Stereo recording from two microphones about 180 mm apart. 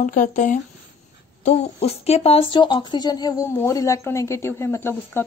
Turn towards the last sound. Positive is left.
turn(degrees=15)  # may be behind; listen again after turning